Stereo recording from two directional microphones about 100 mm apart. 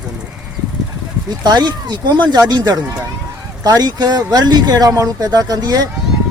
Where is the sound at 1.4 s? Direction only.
45° right (ahead or behind).